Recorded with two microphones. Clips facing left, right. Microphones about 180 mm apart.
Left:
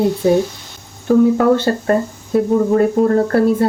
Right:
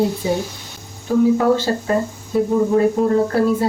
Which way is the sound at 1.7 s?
55° left (ahead or behind).